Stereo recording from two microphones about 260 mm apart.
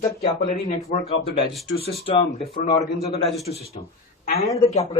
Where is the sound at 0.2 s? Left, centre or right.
Left.